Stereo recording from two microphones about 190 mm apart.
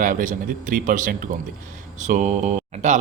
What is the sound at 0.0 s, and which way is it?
A man's voice, 45° right (ahead or behind).